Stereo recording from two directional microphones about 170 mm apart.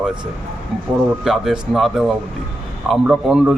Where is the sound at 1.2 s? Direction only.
Centre (ahead or behind).